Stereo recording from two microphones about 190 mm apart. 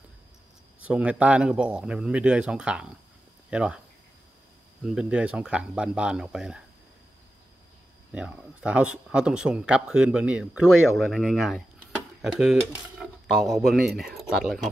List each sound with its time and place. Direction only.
0.7 s speech: 5° right (ahead or behind)
4.8 s speech: 5° right (ahead or behind)
8.1 s speech: 5° right (ahead or behind)